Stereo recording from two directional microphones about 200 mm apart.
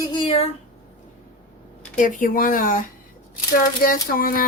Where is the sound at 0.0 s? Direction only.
25° left (ahead or behind).